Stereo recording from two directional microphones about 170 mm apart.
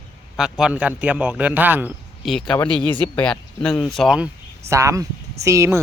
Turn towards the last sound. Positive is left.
turn(degrees=-15)  # may be behind; listen again after turning